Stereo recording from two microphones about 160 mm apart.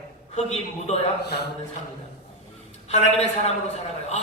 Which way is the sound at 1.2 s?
90° left.